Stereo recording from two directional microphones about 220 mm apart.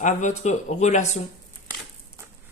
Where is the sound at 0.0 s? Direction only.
35° left (ahead or behind).